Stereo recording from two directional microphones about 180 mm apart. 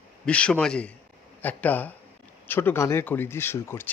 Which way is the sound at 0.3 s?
5° left (ahead or behind).